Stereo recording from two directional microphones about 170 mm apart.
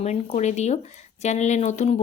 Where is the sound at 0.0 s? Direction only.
40° left (ahead or behind).